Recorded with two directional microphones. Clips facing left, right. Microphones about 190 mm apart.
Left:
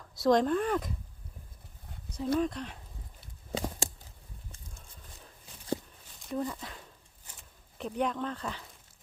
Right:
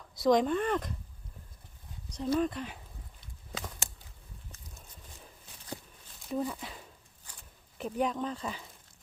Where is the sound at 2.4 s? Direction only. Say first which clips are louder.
Even; centre (ahead or behind).